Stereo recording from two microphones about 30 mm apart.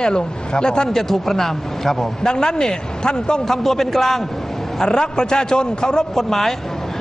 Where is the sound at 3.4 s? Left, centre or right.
Centre.